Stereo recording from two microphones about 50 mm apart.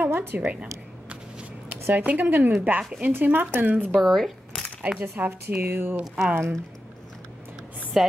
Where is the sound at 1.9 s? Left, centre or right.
Right.